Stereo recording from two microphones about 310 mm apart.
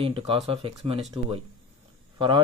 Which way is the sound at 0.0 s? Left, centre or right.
Centre.